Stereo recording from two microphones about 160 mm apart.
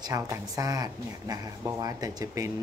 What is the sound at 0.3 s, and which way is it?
Speech, 20° right (ahead or behind).